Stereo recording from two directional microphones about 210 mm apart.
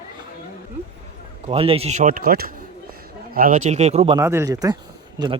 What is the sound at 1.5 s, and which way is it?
Speech, 30° right (ahead or behind).